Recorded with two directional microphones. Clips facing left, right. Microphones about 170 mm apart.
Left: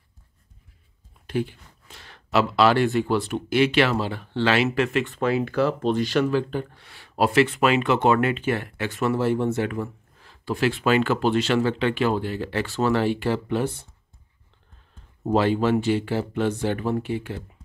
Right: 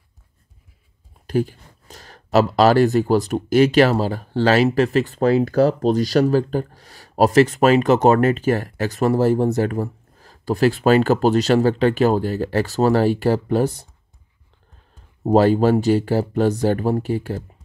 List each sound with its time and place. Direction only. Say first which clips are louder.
1.2 s speech: right 5 dB; 40° right (ahead or behind)
15.2 s speech: right 6 dB; 40° right (ahead or behind)